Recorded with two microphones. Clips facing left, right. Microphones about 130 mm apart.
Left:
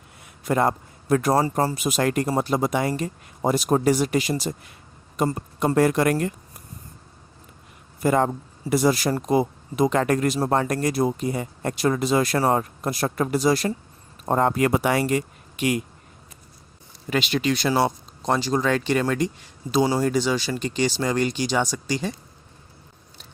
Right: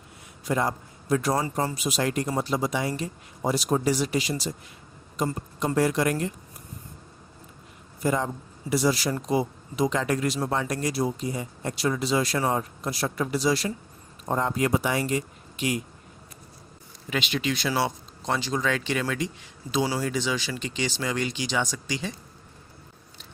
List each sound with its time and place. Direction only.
0.4 s a man's voice: 55° left (ahead or behind)
8.0 s speech: 60° left (ahead or behind)
17.1 s speech: 40° left (ahead or behind)